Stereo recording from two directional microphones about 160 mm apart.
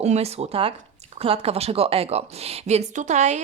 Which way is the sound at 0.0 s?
40° right (ahead or behind).